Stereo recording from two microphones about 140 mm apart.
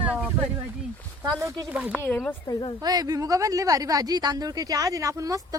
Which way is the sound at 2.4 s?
30° left (ahead or behind).